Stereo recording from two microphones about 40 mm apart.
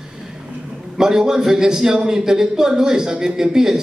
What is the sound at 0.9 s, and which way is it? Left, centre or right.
A man's voice, centre.